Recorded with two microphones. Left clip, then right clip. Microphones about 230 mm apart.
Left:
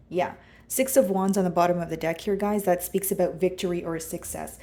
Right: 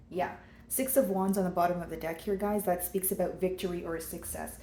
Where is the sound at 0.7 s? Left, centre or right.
Left.